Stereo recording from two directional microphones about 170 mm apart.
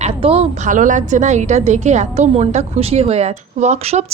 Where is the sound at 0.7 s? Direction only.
50° right (ahead or behind).